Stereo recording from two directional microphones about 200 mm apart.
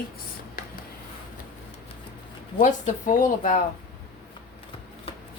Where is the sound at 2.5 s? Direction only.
40° left (ahead or behind).